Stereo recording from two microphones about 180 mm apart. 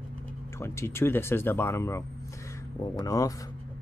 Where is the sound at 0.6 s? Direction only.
15° left (ahead or behind).